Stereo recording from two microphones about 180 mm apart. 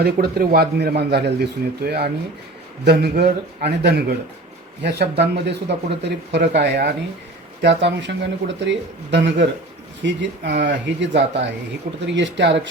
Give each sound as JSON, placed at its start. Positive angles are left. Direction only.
{"t": 0.0, "sound": "a man's voice", "side_deg": -60}